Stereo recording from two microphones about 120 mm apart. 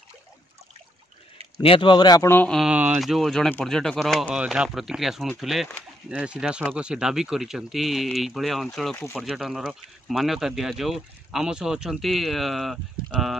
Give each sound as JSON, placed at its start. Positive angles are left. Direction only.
{"t": 1.6, "sound": "speech", "side_deg": 50}
{"t": 2.2, "sound": "a man's voice", "side_deg": 15}
{"t": 2.7, "sound": "speech", "side_deg": -15}
{"t": 3.0, "sound": "speech", "side_deg": 0}
{"t": 4.3, "sound": "speech", "side_deg": -10}